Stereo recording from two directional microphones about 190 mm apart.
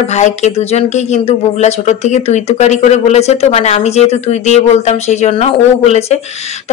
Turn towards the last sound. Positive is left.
turn(degrees=35)  # may be behind; listen again after turning